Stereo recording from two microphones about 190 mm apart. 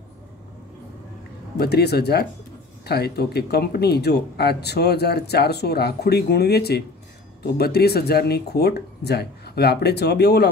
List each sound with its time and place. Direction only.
1.6 s speech: 60° left (ahead or behind)